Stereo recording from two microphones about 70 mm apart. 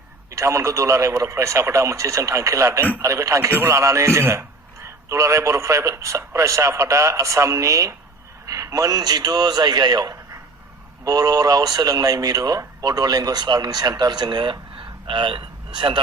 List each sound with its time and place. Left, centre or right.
0.3 s a man's voice: right
3.5 s speech: right
3.8 s a man's voice: right